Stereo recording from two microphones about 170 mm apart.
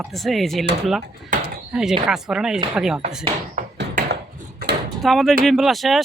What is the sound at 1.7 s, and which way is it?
Speech, 5° right (ahead or behind).